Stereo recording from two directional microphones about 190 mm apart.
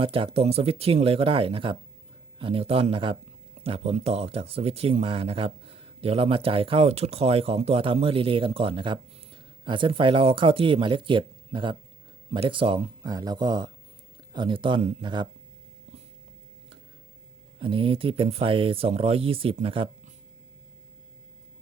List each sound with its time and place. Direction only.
0.0 s speech: 30° right (ahead or behind)
17.6 s speech: 30° right (ahead or behind)